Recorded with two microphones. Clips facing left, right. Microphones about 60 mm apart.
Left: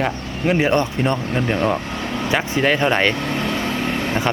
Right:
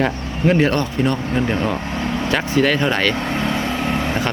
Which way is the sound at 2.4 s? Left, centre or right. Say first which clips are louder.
Right 1 dB; left.